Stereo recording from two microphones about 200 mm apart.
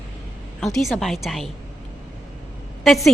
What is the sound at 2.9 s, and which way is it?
Speech, centre (ahead or behind).